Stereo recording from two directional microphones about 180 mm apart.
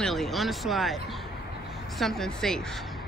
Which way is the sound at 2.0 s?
Centre (ahead or behind).